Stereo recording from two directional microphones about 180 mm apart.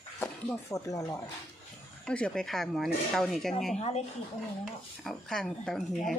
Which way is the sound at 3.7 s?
35° left (ahead or behind).